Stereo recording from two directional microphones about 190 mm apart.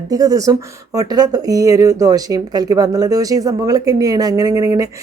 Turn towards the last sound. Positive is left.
turn(degrees=-20)  # may be behind; listen again after turning